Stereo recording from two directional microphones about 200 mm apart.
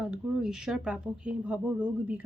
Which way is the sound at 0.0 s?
5° right (ahead or behind).